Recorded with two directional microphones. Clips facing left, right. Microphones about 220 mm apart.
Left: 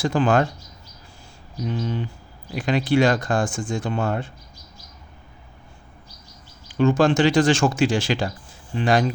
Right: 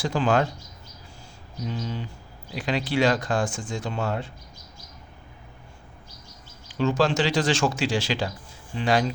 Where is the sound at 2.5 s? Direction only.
50° left (ahead or behind).